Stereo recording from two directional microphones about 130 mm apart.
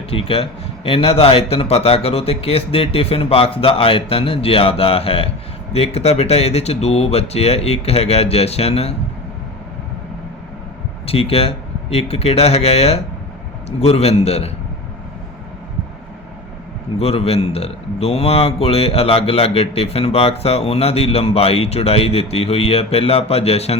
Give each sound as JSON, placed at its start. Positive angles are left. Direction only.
{"t": 0.1, "sound": "speech", "side_deg": 45}
{"t": 11.0, "sound": "speech", "side_deg": 50}
{"t": 17.0, "sound": "speech", "side_deg": 50}